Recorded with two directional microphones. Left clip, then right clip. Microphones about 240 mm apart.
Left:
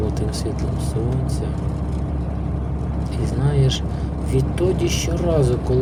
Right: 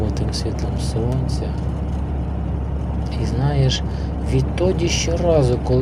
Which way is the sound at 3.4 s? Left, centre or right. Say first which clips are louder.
Right 1 dB; centre.